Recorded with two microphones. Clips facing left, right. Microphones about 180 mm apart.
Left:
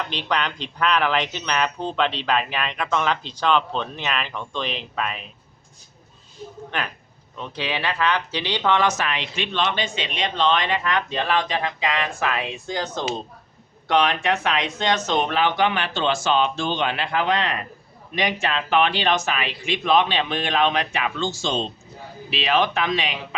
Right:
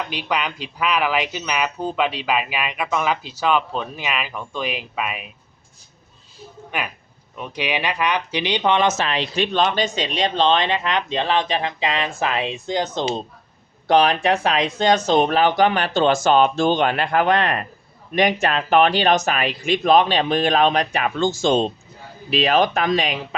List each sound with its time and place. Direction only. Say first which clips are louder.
0.1 s speech: right 1 dB; 10° right (ahead or behind)
6.7 s speech: right 2 dB; 10° right (ahead or behind)
13.8 s speech: right 4 dB; 35° right (ahead or behind)